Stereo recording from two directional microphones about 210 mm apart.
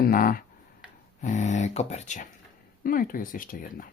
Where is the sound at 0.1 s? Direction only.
40° left (ahead or behind).